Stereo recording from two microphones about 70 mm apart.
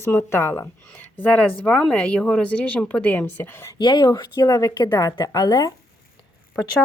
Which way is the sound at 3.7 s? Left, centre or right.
Left.